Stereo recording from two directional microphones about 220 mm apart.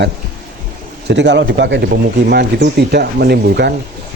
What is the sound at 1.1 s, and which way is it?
A man's voice, 55° right (ahead or behind).